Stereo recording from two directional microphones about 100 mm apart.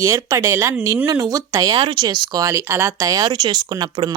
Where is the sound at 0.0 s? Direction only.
35° right (ahead or behind).